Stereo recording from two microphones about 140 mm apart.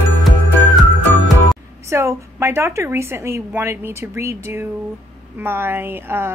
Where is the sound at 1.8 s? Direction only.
20° right (ahead or behind).